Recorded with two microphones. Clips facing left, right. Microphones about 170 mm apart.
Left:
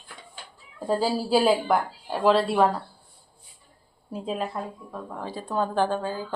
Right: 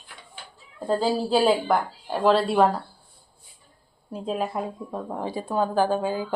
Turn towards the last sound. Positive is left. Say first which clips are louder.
# right 3 dB
turn(degrees=-15)  # may be behind; listen again after turning